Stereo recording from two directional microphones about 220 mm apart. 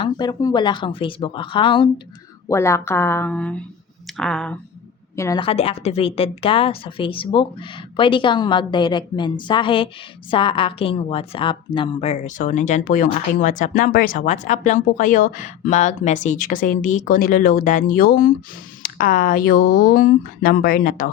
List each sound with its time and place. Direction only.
0.0 s speech: 20° left (ahead or behind); by 4.5 s 5° left (ahead or behind)
5.1 s a woman's voice: 15° left (ahead or behind); by 21.1 s 40° left (ahead or behind)